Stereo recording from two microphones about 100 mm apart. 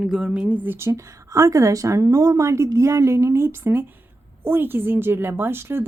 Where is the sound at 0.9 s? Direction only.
30° right (ahead or behind).